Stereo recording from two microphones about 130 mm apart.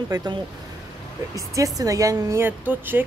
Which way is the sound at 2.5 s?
15° right (ahead or behind).